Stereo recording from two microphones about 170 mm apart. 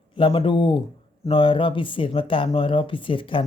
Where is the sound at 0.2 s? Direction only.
30° left (ahead or behind).